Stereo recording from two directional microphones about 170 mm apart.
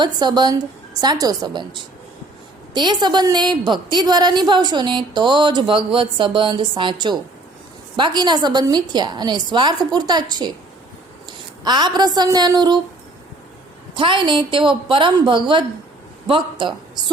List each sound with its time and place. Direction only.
0.0 s a woman's voice: 25° right (ahead or behind)
2.7 s a woman's voice: 25° right (ahead or behind)
13.9 s a woman's voice: 30° right (ahead or behind)